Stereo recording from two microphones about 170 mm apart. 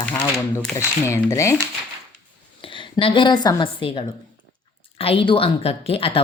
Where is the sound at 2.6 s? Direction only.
30° left (ahead or behind).